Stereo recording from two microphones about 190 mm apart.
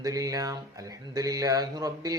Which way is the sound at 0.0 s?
20° right (ahead or behind).